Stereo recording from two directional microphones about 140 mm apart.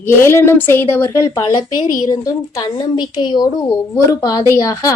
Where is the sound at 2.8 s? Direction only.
35° left (ahead or behind).